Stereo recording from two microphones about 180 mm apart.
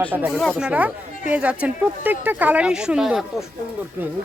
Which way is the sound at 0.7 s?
10° right (ahead or behind).